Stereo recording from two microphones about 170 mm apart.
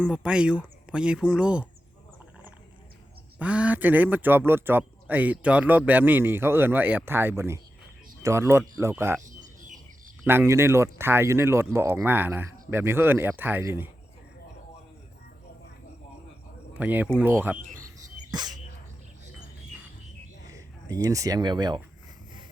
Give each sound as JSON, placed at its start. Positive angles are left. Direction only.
{"t": 0.0, "sound": "speech", "side_deg": -5}
{"t": 3.3, "sound": "speech", "side_deg": -5}
{"t": 9.2, "sound": "bird", "side_deg": -50}
{"t": 10.2, "sound": "speech", "side_deg": -15}
{"t": 16.7, "sound": "speech", "side_deg": -10}
{"t": 18.3, "sound": "dog", "side_deg": -25}
{"t": 20.4, "sound": "speech", "side_deg": -20}